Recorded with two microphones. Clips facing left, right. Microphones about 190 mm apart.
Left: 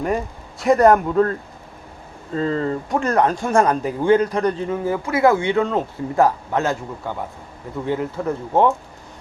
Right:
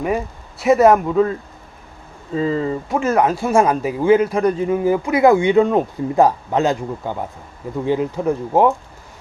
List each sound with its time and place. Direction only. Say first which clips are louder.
0.6 s speech: right 1 dB; 5° right (ahead or behind)